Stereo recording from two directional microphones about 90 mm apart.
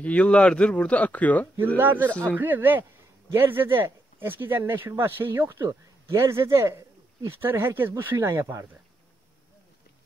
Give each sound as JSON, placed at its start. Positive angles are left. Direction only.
{"t": 0.0, "sound": "speech", "side_deg": 15}
{"t": 1.8, "sound": "speech", "side_deg": -20}
{"t": 2.0, "sound": "speech", "side_deg": 15}
{"t": 2.3, "sound": "speech", "side_deg": -20}